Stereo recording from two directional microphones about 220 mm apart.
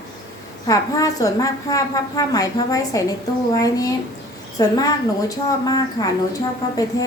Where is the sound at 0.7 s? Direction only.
15° left (ahead or behind).